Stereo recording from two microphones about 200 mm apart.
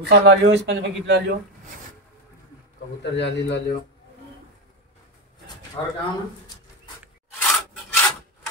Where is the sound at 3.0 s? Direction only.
60° left (ahead or behind).